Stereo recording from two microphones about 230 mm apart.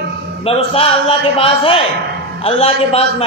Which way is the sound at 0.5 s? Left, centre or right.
Left.